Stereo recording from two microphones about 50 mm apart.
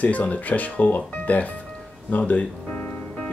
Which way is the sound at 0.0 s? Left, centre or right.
Left.